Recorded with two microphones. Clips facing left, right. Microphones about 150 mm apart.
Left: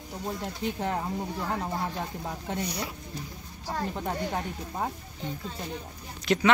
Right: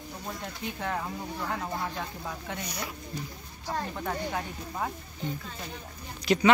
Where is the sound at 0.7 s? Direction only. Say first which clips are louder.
Even; 30° left (ahead or behind).